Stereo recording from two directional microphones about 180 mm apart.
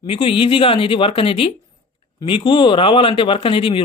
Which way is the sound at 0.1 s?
30° left (ahead or behind).